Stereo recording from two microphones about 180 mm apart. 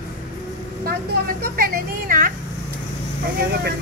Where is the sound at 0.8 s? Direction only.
55° right (ahead or behind).